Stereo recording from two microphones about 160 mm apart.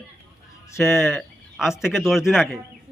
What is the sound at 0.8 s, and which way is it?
Speech, 15° left (ahead or behind).